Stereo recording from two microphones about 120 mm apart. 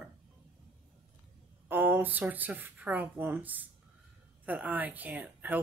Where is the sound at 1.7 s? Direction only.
15° right (ahead or behind).